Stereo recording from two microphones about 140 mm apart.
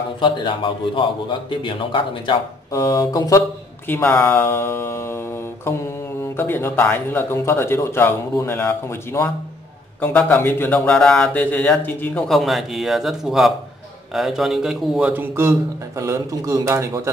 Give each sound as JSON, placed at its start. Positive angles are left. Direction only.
{"t": 0.2, "sound": "a man's voice", "side_deg": 35}
{"t": 2.7, "sound": "speech", "side_deg": 25}
{"t": 5.7, "sound": "mantra", "side_deg": 20}
{"t": 6.3, "sound": "speech", "side_deg": 15}
{"t": 10.9, "sound": "speech", "side_deg": 5}
{"t": 12.3, "sound": "a man's voice", "side_deg": 0}